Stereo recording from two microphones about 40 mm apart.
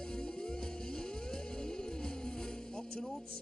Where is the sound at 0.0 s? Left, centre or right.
Centre.